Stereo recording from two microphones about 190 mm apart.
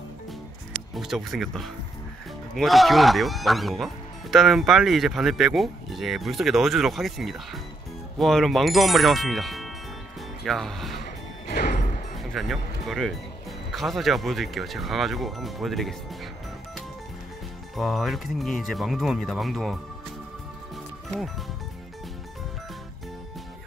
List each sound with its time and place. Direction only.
0.9 s speech: centre (ahead or behind)
11.4 s music: 60° left (ahead or behind)
12.2 s speech: centre (ahead or behind)
17.7 s speech: centre (ahead or behind)